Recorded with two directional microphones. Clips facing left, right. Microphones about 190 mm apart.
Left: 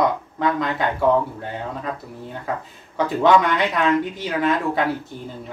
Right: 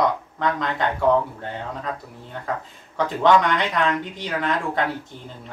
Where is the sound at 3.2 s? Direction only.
5° left (ahead or behind).